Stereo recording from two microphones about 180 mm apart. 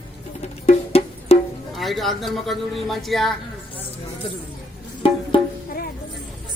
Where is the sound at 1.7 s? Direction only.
Centre (ahead or behind).